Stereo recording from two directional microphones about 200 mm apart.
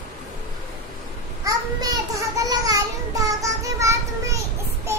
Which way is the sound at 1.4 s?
15° right (ahead or behind).